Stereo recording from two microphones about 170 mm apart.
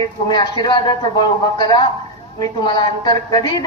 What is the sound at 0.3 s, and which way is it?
A woman's voice, 25° left (ahead or behind).